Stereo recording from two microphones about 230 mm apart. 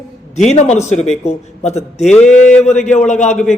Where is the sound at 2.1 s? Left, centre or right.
Centre.